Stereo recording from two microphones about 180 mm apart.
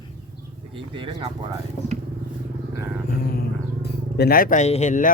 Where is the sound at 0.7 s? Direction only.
30° right (ahead or behind).